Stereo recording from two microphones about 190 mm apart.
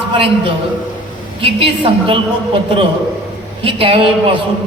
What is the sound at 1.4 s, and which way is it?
Speech, 30° right (ahead or behind).